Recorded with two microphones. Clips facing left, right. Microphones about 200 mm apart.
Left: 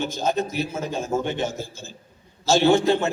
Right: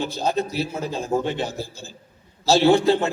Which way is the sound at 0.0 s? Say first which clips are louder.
Even; 35° right (ahead or behind).